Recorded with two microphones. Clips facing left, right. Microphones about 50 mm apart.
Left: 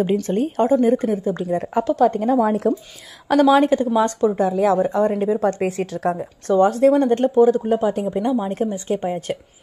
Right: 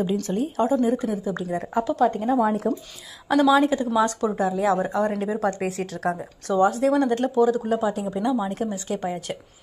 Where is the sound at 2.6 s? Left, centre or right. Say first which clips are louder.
Left 5 dB; centre.